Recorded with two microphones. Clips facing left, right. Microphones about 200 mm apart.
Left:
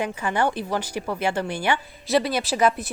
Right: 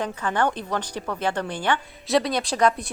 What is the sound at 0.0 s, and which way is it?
A woman's voice, 10° left (ahead or behind).